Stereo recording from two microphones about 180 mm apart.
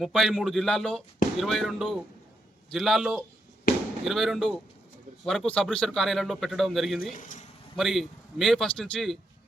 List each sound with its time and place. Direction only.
0.0 s a man's voice: centre (ahead or behind)
7.1 s speech: 45° left (ahead or behind)
7.8 s a man's voice: centre (ahead or behind)